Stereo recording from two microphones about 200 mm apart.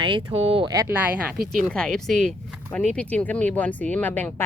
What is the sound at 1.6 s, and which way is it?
Speech, 5° left (ahead or behind).